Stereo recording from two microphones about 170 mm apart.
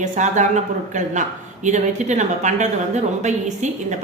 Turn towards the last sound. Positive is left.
turn(degrees=-45)  # may be behind; listen again after turning